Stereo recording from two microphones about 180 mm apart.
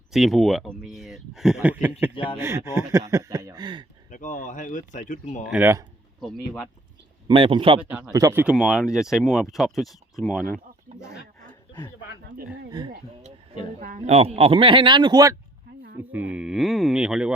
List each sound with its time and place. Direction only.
0.1 s speech: centre (ahead or behind)
2.1 s speech: 30° left (ahead or behind)
2.4 s speech: 15° right (ahead or behind)
4.1 s speech: 45° left (ahead or behind)
5.5 s speech: 10° right (ahead or behind)
6.1 s speech: centre (ahead or behind)
7.3 s speech: 30° right (ahead or behind)
7.8 s speech: 5° right (ahead or behind)
8.5 s speech: centre (ahead or behind)
10.9 s speech: 40° right (ahead or behind)
11.4 s snicker: 25° left (ahead or behind)
13.7 s speech: 45° right (ahead or behind); by 15.4 s 20° right (ahead or behind)
16.0 s speech: 10° right (ahead or behind)